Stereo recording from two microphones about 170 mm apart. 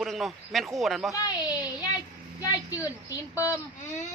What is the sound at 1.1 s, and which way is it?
Speech, 20° left (ahead or behind).